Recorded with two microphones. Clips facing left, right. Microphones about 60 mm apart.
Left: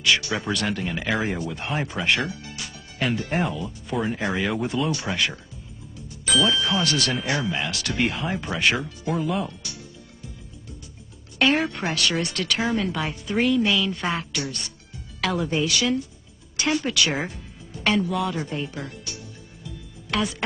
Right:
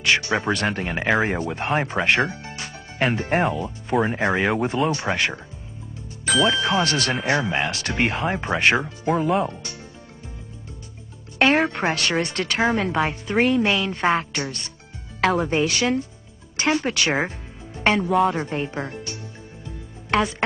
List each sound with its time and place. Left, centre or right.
0.0 s a woman's voice: right
11.3 s a woman's voice: right
17.3 s music: right